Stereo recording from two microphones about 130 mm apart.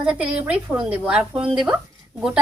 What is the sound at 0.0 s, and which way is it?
Speech, 10° right (ahead or behind).